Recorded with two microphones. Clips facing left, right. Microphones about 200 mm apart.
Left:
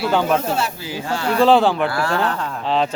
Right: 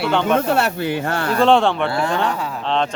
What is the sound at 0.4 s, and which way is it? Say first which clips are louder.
Speech: right 4 dB; 60° right (ahead or behind).